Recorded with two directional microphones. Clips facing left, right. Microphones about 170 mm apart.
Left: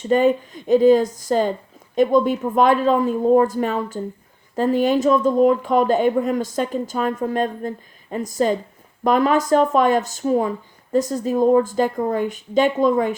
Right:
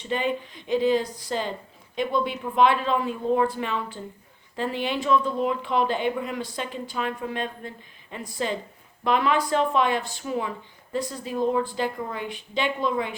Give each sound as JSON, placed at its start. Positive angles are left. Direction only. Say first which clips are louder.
{"t": 0.0, "sound": "speech", "louder": "left 10 dB", "side_deg": 45}